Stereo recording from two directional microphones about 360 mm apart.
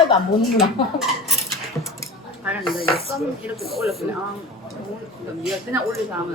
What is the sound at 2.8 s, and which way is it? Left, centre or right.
Speech, left.